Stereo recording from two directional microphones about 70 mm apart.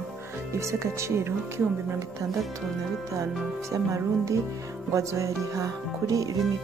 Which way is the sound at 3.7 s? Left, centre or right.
Right.